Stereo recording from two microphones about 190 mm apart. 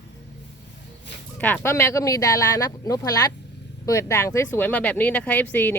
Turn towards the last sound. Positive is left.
turn(degrees=10)  # may be behind; listen again after turning